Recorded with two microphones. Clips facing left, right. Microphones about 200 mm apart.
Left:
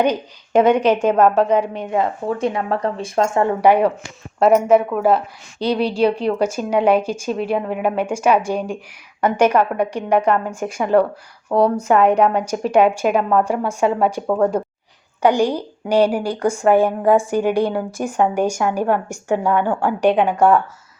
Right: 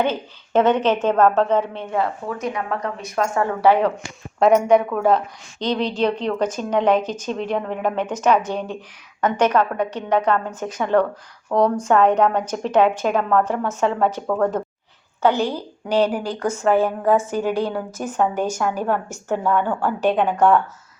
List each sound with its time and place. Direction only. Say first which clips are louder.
0.0 s a woman's voice: left 3 dB; 15° left (ahead or behind)
2.2 s speech: left 5 dB; 30° left (ahead or behind)
3.6 s a woman's voice: left 1 dB; 15° left (ahead or behind)
4.4 s a woman's voice: left 2 dB; 5° left (ahead or behind)